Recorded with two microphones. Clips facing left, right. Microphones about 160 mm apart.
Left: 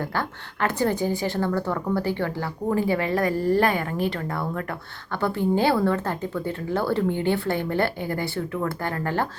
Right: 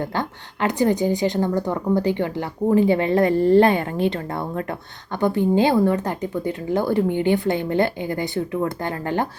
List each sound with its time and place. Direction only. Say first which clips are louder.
0.0 s a woman's voice: right 3 dB; 20° right (ahead or behind)